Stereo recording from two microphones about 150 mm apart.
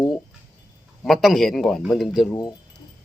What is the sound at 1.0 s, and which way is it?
A man's voice, centre (ahead or behind).